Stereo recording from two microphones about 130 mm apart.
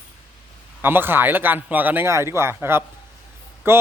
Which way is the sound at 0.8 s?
15° right (ahead or behind).